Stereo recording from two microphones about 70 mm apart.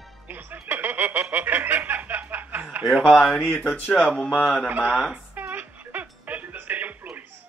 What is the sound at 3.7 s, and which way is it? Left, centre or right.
Speech, centre.